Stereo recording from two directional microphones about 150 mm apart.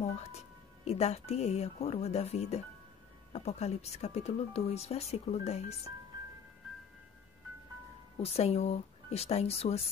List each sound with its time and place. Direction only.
0.8 s speech: 45° left (ahead or behind)
8.2 s speech: 45° left (ahead or behind)